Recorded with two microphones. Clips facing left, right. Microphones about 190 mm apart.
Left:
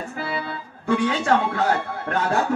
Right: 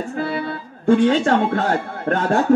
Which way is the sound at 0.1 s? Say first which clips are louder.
Right 5 dB; 55° right (ahead or behind).